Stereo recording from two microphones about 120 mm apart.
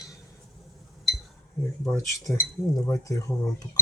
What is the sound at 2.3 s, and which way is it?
Speech, 25° left (ahead or behind).